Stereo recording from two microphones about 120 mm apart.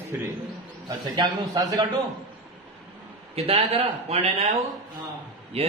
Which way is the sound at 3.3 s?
55° right (ahead or behind).